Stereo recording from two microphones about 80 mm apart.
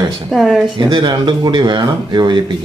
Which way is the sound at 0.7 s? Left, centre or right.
Right.